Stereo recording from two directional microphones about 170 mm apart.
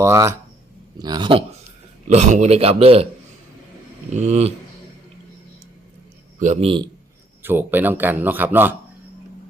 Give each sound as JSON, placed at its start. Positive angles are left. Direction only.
{"t": 0.0, "sound": "speech", "side_deg": -15}
{"t": 2.0, "sound": "a man's voice", "side_deg": -45}
{"t": 4.1, "sound": "a man's voice", "side_deg": -40}
{"t": 6.4, "sound": "a man's voice", "side_deg": -40}
{"t": 7.4, "sound": "speech", "side_deg": -10}